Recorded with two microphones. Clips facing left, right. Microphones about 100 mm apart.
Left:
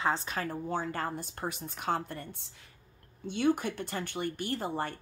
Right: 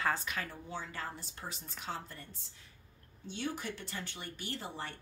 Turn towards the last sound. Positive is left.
turn(degrees=50)  # may be behind; listen again after turning